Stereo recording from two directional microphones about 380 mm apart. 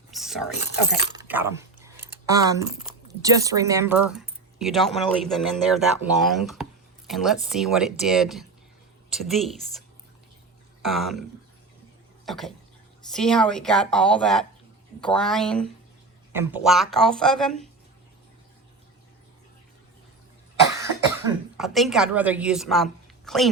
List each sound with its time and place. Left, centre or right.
0.1 s a sound: centre
0.7 s speech: left
1.1 s speech: centre
10.8 s speech: centre
12.2 s a sound: centre
13.1 s speech: centre
21.2 s a woman's voice: centre